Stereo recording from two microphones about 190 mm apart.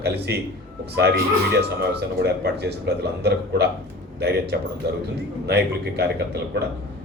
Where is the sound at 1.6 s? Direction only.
60° right (ahead or behind).